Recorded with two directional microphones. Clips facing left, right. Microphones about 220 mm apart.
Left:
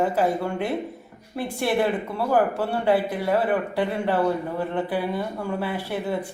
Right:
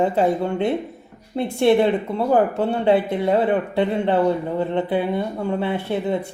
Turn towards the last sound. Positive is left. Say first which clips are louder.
# right 4 dB
turn(degrees=-25)  # may be behind; listen again after turning